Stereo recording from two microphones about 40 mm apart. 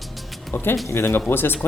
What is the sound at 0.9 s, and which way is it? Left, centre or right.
Speech, left.